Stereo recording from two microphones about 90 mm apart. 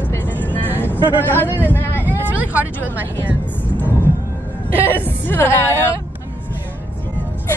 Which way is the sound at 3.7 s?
20° left (ahead or behind).